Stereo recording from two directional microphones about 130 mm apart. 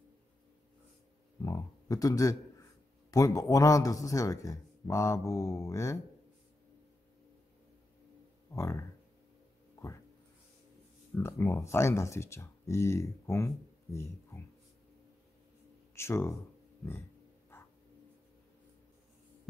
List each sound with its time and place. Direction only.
1.4 s a man's voice: 25° left (ahead or behind)
8.5 s a man's voice: 20° left (ahead or behind)
11.1 s a man's voice: 20° left (ahead or behind)
15.9 s speech: 20° left (ahead or behind)